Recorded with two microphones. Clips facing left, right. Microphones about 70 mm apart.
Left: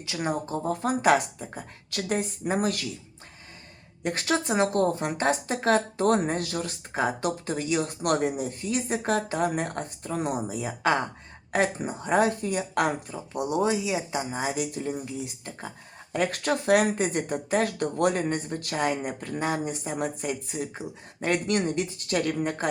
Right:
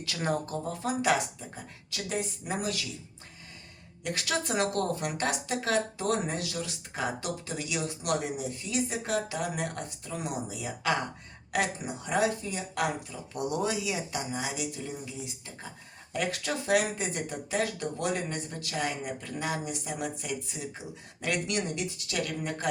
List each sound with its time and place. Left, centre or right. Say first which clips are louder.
0.0 s speech: left 2 dB; centre
0.5 s a woman's voice: left 5 dB; left
4.0 s a woman's voice: left 5 dB; left
13.3 s speech: left 5 dB; left
14.3 s a woman's voice: left 5 dB; left